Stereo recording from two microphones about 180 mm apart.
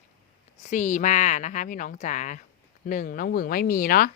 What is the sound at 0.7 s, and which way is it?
Speech, 45° left (ahead or behind).